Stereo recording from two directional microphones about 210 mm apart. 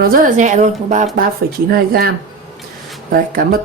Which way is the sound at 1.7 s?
45° right (ahead or behind).